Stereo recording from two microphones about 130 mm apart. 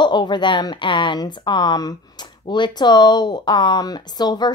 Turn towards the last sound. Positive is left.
turn(degrees=30)  # may be behind; listen again after turning